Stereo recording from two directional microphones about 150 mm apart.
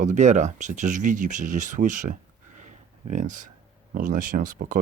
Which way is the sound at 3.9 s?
65° right (ahead or behind).